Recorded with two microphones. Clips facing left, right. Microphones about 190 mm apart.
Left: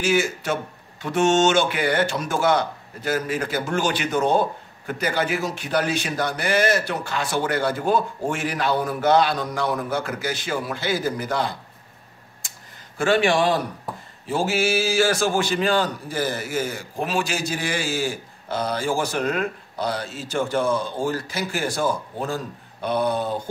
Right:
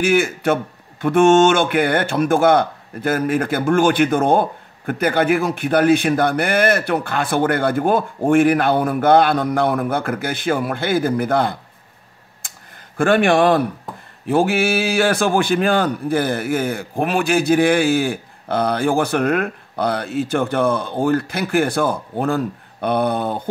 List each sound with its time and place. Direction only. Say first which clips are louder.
0.0 s speech: right 5 dB; 55° right (ahead or behind)
12.4 s tick-tock: right 4 dB; 55° right (ahead or behind)
14.2 s speech: right 6 dB; 60° right (ahead or behind)